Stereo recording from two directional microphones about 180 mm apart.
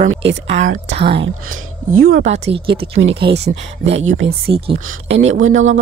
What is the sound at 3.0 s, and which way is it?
Speech, 80° right.